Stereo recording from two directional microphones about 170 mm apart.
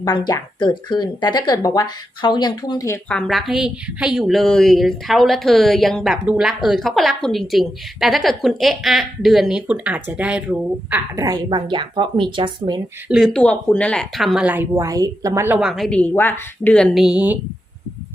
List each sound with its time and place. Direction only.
0.0 s speech: 25° left (ahead or behind)
3.1 s a woman's voice: 5° left (ahead or behind)
11.4 s a woman's voice: 30° right (ahead or behind)
13.1 s a woman's voice: centre (ahead or behind)